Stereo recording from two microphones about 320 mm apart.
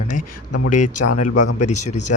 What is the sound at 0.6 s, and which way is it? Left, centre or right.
A man's voice, left.